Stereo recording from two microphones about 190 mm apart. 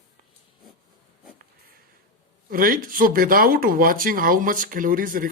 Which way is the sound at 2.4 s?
50° right (ahead or behind).